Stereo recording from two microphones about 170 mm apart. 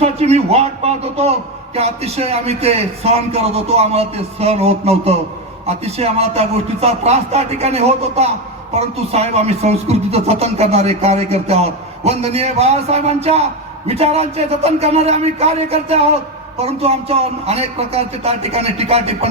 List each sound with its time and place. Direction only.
0.0 s a man's voice: 40° right (ahead or behind)